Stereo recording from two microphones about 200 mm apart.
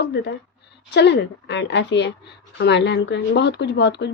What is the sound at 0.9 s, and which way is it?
A woman's voice, 55° left (ahead or behind).